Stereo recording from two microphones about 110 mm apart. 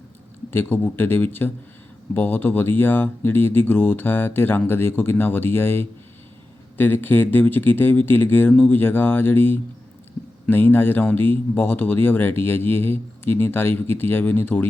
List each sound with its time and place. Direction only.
0.5 s speech: 20° left (ahead or behind)